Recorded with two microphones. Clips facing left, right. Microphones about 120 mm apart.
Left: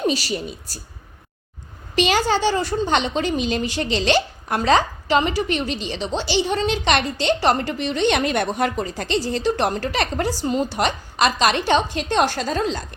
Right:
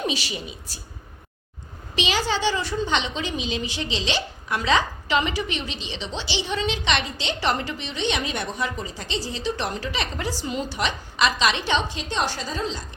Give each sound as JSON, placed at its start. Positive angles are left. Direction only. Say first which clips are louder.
{"t": 0.0, "sound": "speech", "louder": "left 6 dB", "side_deg": 40}
{"t": 2.0, "sound": "a woman's voice", "louder": "left 6 dB", "side_deg": 50}